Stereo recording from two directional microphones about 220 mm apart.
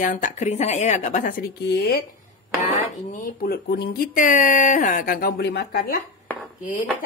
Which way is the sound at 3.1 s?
40° left (ahead or behind).